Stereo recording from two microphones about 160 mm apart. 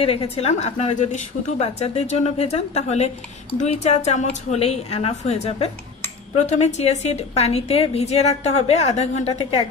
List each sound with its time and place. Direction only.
0.0 s a woman's voice: 35° left (ahead or behind)
9.4 s a woman's voice: 30° left (ahead or behind)